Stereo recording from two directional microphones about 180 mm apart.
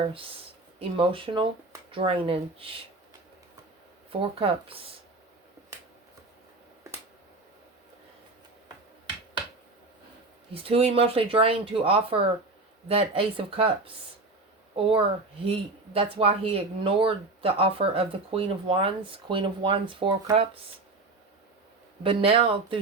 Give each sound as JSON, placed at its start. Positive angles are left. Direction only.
{"t": 0.0, "sound": "speech", "side_deg": -30}
{"t": 4.1, "sound": "speech", "side_deg": -30}
{"t": 10.5, "sound": "speech", "side_deg": -30}
{"t": 22.0, "sound": "speech", "side_deg": -30}